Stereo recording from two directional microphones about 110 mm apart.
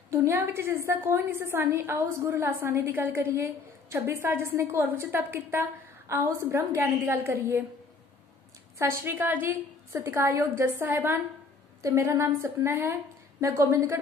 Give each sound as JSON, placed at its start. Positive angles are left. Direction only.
{"t": 0.1, "sound": "a woman's voice", "side_deg": -25}
{"t": 8.7, "sound": "a woman's voice", "side_deg": -20}